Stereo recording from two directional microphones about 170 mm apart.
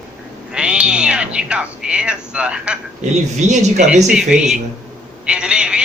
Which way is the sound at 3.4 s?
45° right (ahead or behind).